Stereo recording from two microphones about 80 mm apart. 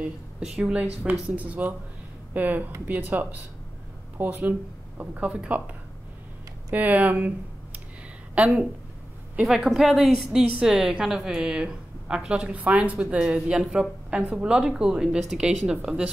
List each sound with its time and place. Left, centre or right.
0.4 s a woman's voice: centre
6.7 s speech: centre
9.4 s a woman's voice: centre